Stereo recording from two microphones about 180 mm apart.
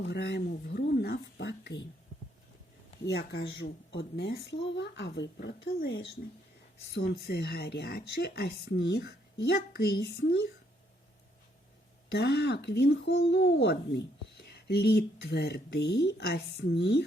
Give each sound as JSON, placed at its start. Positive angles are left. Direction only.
{"t": 0.0, "sound": "speech", "side_deg": 70}
{"t": 3.1, "sound": "speech", "side_deg": 85}
{"t": 12.1, "sound": "speech", "side_deg": 65}